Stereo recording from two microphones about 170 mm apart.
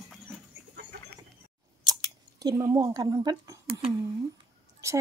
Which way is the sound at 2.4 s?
20° right (ahead or behind).